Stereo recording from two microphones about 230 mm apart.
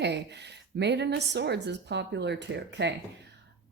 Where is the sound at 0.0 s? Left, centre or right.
Right.